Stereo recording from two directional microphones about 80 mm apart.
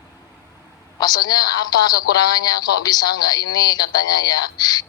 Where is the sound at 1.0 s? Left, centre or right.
Left.